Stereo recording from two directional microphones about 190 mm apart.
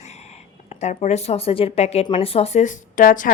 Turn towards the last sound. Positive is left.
turn(degrees=45)  # may be behind; listen again after turning